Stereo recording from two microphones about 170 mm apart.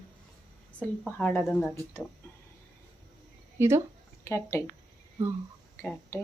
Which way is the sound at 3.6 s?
15° right (ahead or behind).